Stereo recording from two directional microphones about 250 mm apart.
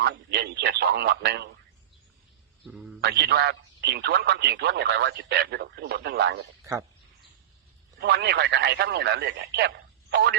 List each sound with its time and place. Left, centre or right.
0.0 s speech: right
2.6 s a man's voice: centre
3.0 s speech: right
8.0 s speech: right